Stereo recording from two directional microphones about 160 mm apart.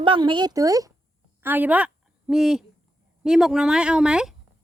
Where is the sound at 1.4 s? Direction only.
10° right (ahead or behind).